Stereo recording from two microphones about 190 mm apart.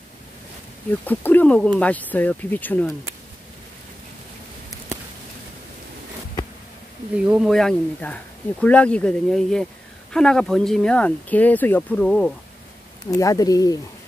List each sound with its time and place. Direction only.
1.0 s speech: 10° left (ahead or behind)
7.2 s speech: 5° right (ahead or behind)
13.1 s speech: 20° left (ahead or behind)